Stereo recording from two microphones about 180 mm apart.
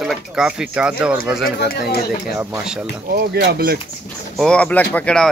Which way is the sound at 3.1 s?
60° right (ahead or behind).